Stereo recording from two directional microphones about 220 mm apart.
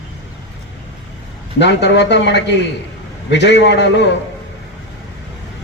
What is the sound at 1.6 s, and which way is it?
A man's voice, 50° left (ahead or behind).